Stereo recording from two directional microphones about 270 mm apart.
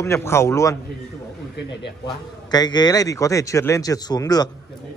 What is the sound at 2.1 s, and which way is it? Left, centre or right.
Speech, centre.